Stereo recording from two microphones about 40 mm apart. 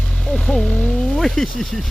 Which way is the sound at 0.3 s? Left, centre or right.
Centre.